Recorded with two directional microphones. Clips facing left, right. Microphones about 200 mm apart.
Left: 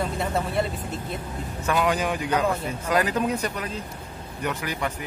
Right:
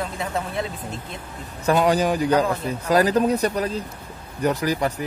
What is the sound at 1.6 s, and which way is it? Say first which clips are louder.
A man's voice: right 5 dB; 35° right (ahead or behind).